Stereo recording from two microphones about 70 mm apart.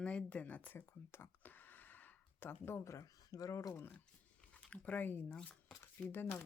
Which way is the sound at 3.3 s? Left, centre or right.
Left.